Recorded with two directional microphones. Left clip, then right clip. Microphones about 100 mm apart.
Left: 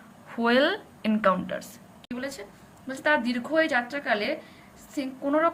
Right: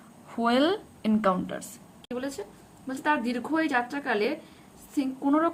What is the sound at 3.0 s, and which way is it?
A woman's voice, 20° right (ahead or behind).